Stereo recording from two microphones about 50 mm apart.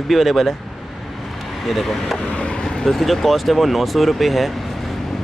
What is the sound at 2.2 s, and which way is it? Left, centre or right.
Vehicle, centre.